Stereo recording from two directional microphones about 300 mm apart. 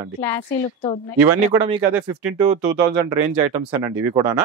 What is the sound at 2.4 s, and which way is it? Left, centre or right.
Speech, centre.